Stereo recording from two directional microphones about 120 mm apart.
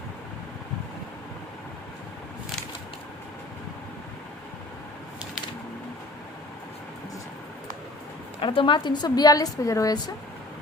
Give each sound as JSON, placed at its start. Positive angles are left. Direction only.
{"t": 8.4, "sound": "a woman's voice", "side_deg": 45}